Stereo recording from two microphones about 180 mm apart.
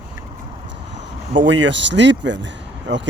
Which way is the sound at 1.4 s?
90° right.